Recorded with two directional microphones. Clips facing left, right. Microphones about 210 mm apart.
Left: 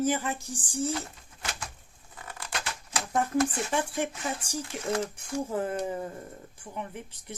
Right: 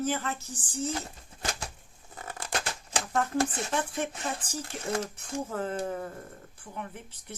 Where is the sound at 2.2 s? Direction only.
40° right (ahead or behind).